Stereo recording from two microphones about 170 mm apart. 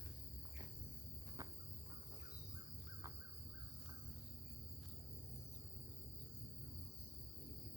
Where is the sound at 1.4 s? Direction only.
20° right (ahead or behind).